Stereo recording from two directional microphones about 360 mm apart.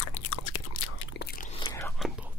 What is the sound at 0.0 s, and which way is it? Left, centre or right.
Chewing, left.